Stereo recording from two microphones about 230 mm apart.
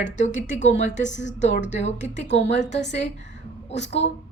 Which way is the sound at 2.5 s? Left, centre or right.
Left.